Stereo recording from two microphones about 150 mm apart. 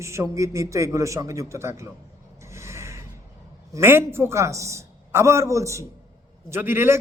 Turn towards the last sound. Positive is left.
turn(degrees=-15)  # may be behind; listen again after turning